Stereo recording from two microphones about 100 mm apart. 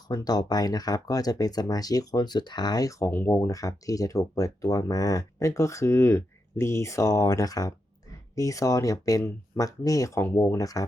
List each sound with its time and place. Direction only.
0.1 s speech: 40° left (ahead or behind)
3.1 s speech: 25° left (ahead or behind)